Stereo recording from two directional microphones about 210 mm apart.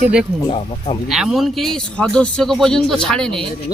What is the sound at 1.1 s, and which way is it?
Speech, centre (ahead or behind).